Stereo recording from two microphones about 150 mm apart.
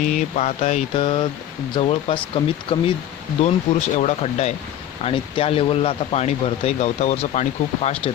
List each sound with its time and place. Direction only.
0.2 s speech: 50° left (ahead or behind)
3.4 s speech: 50° left (ahead or behind)
5.0 s speech: 35° left (ahead or behind)